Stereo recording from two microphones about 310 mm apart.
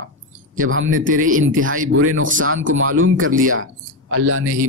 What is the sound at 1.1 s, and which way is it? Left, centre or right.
Speech, right.